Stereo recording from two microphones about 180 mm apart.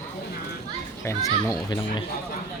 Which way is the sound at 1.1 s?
20° left (ahead or behind).